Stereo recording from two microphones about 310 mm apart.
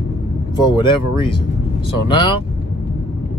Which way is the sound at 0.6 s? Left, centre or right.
Centre.